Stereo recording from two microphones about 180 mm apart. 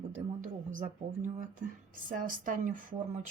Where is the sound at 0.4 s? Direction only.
45° right (ahead or behind).